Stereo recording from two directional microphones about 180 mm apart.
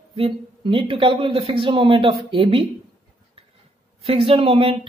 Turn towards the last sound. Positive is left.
turn(degrees=-30)  # may be behind; listen again after turning